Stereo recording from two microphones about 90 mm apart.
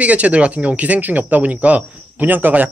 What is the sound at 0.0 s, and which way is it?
Speech, 15° right (ahead or behind).